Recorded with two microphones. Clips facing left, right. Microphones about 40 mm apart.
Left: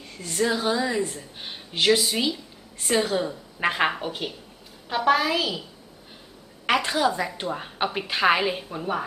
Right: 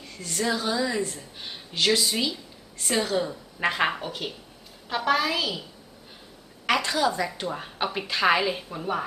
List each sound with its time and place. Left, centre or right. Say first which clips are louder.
0.2 s a woman's voice: left 3 dB; centre
6.7 s a woman's voice: left 1 dB; centre